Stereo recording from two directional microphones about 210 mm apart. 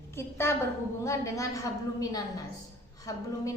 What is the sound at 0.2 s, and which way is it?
A woman's voice, 10° left (ahead or behind).